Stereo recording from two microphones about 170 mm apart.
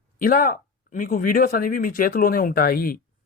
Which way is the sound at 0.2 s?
55° left (ahead or behind).